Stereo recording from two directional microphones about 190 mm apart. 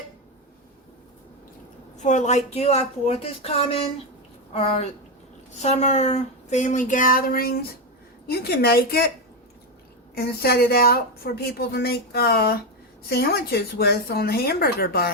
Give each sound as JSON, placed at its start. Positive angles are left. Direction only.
{"t": 2.0, "sound": "speech", "side_deg": 40}
{"t": 4.5, "sound": "a woman's voice", "side_deg": 30}
{"t": 10.2, "sound": "a woman's voice", "side_deg": 55}